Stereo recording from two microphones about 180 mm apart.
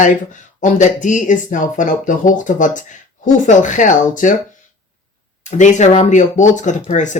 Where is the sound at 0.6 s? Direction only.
45° left (ahead or behind).